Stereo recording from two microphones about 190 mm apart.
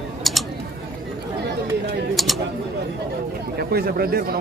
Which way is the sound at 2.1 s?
Centre (ahead or behind).